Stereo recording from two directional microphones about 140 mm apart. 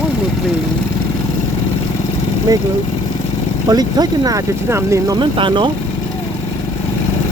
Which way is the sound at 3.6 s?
30° right (ahead or behind).